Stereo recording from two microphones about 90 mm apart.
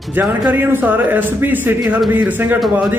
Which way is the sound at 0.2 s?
20° right (ahead or behind).